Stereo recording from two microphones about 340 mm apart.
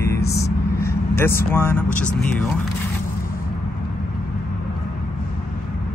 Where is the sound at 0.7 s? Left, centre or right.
Centre.